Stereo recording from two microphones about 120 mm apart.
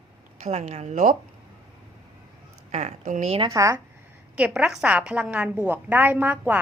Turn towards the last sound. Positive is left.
turn(degrees=-15)  # may be behind; listen again after turning